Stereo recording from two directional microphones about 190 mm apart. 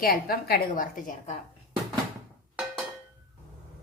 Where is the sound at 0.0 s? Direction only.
50° left (ahead or behind).